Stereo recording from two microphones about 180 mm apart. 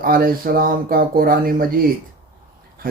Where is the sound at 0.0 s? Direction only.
55° right (ahead or behind).